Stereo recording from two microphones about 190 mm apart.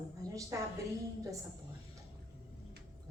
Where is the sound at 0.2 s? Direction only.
15° right (ahead or behind).